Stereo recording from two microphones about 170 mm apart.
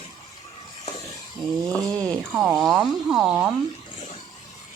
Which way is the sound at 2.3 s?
5° right (ahead or behind).